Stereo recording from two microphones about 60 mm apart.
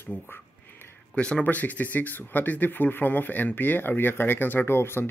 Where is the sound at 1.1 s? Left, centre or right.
Centre.